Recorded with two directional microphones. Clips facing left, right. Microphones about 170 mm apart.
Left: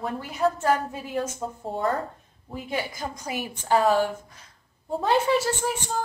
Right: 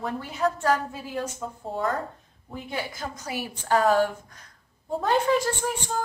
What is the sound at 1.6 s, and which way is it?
Speech, centre (ahead or behind).